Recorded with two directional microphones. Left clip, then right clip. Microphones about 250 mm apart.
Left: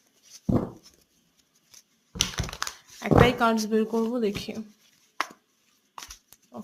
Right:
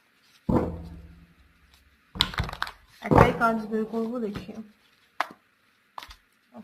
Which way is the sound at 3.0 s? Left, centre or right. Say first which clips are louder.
Right 1 dB; left.